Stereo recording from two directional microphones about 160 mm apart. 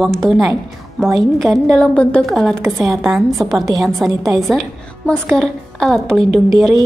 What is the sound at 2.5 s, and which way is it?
Speech, 20° right (ahead or behind).